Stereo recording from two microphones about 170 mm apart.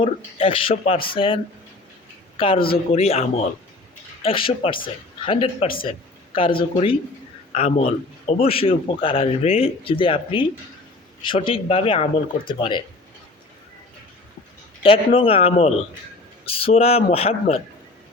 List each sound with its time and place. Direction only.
0.0 s speech: 30° left (ahead or behind)
2.4 s speech: 30° left (ahead or behind)
14.8 s speech: 30° left (ahead or behind)